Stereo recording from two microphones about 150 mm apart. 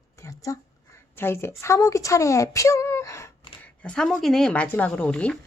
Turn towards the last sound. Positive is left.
turn(degrees=10)  # may be behind; listen again after turning